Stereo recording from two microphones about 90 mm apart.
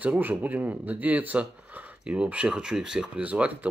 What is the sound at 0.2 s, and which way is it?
Speech, 20° right (ahead or behind).